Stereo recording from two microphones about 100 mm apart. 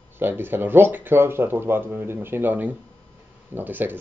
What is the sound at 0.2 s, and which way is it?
Speech, 20° right (ahead or behind).